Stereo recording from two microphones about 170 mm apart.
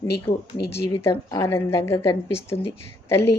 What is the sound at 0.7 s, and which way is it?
A woman's voice, 15° left (ahead or behind).